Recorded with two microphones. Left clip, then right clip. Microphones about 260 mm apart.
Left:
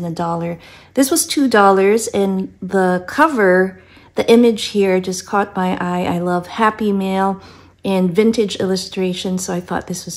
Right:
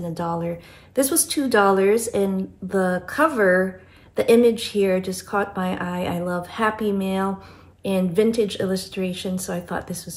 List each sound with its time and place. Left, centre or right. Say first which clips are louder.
0.1 s speech: left 5 dB; left